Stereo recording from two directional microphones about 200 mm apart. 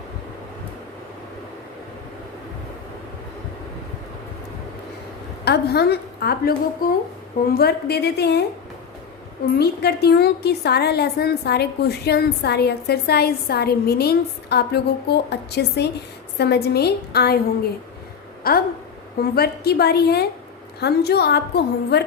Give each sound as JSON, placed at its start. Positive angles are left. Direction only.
{"t": 5.5, "sound": "a woman's voice", "side_deg": 55}
{"t": 9.6, "sound": "a woman's voice", "side_deg": 55}
{"t": 18.5, "sound": "a woman's voice", "side_deg": 50}